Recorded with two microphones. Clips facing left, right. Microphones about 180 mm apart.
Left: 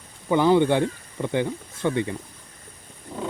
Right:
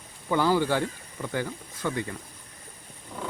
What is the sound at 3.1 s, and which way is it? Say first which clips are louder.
Wild animals: left 5 dB; 20° left (ahead or behind).